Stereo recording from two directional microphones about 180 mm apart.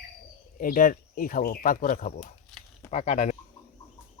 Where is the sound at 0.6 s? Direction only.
50° left (ahead or behind).